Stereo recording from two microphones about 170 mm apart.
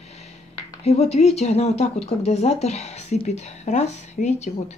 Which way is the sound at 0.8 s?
40° left (ahead or behind).